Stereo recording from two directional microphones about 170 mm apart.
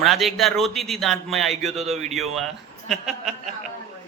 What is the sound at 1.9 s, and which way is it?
Speech, 40° right (ahead or behind).